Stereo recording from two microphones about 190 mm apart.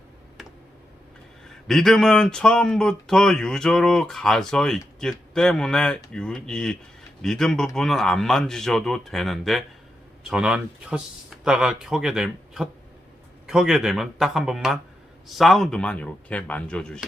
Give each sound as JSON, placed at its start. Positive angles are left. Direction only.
{"t": 1.6, "sound": "speech", "side_deg": 0}